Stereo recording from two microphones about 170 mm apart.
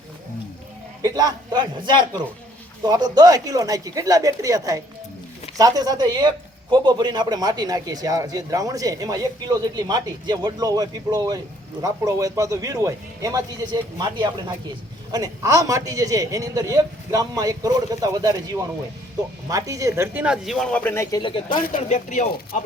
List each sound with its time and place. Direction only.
1.0 s a man's voice: 20° right (ahead or behind); by 21.2 s 15° left (ahead or behind)
21.2 s speech: 30° left (ahead or behind)
21.7 s speech: 50° left (ahead or behind)